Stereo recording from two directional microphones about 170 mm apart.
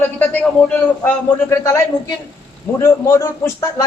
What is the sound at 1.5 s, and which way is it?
Speech, 15° left (ahead or behind).